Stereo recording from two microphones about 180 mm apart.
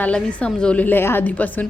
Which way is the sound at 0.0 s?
5° left (ahead or behind).